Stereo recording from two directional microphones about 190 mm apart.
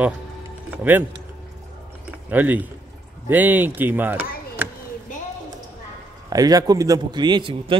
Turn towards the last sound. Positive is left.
turn(degrees=-25)  # may be behind; listen again after turning